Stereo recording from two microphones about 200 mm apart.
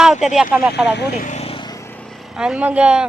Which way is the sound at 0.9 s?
55° left (ahead or behind).